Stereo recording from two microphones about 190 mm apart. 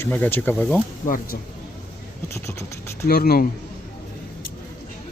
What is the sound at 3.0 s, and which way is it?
Speech, 55° left (ahead or behind).